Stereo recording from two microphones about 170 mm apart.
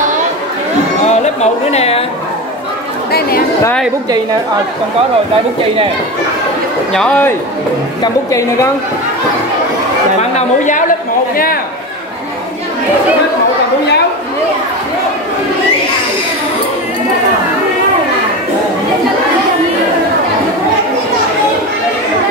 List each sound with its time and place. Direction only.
1.0 s music: 40° left (ahead or behind)
3.1 s speech: 65° left (ahead or behind)
6.9 s speech: 5° left (ahead or behind)
8.0 s a woman's voice: 20° left (ahead or behind)
10.3 s a woman's voice: 45° left (ahead or behind)
11.3 s speech: 60° left (ahead or behind)